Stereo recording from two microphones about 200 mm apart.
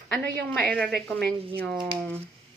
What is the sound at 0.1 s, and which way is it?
Speech, 5° left (ahead or behind).